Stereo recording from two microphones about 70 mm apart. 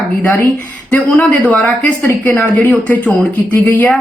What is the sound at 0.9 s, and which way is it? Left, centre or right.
Speech, left.